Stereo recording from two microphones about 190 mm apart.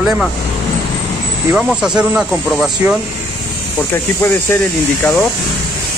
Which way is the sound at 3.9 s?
10° left (ahead or behind).